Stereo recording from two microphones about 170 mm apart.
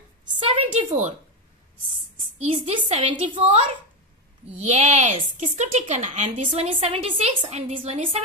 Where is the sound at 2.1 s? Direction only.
40° right (ahead or behind).